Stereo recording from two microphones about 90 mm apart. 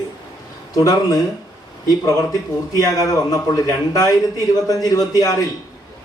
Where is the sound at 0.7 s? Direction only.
40° left (ahead or behind).